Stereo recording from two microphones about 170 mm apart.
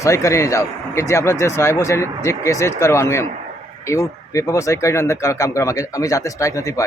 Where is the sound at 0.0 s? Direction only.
20° left (ahead or behind).